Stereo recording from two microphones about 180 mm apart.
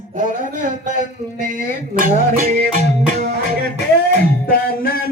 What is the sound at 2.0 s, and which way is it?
Music, 50° right (ahead or behind).